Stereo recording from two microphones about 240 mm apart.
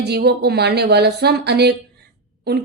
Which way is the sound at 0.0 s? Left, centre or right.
Right.